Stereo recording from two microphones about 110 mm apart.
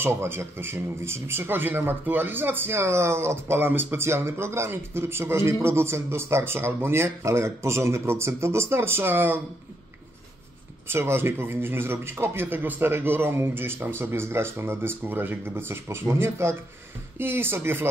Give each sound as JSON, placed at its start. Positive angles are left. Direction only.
{"t": 0.0, "sound": "a man's voice", "side_deg": -20}
{"t": 10.9, "sound": "a man's voice", "side_deg": -20}